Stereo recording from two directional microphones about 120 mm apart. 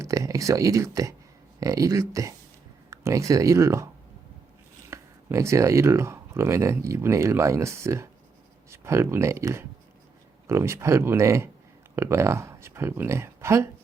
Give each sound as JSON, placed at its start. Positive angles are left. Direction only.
{"t": 0.0, "sound": "speech", "side_deg": -25}
{"t": 4.9, "sound": "speech", "side_deg": -25}